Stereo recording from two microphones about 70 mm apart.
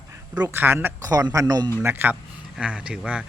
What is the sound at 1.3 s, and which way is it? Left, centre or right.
Speech, right.